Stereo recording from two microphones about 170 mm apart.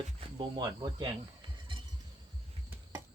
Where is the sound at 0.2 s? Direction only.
30° right (ahead or behind).